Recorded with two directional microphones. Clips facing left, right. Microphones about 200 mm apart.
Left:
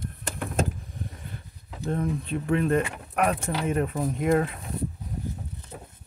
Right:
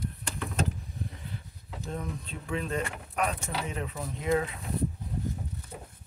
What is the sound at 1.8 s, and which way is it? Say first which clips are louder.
Speech: left 9 dB; 60° left (ahead or behind).